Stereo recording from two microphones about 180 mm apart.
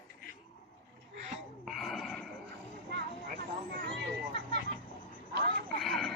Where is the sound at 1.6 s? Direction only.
Centre (ahead or behind).